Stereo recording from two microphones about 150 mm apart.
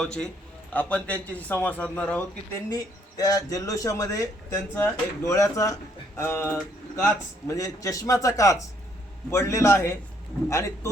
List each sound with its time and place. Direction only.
0.0 s a man's voice: 5° left (ahead or behind)
2.6 s speech: 25° left (ahead or behind)